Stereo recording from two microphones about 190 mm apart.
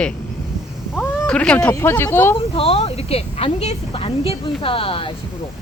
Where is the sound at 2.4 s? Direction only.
30° left (ahead or behind).